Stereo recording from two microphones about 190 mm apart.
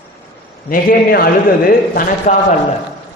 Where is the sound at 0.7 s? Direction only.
50° left (ahead or behind).